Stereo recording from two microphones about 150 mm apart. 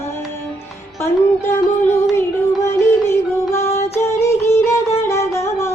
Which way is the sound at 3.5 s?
20° left (ahead or behind).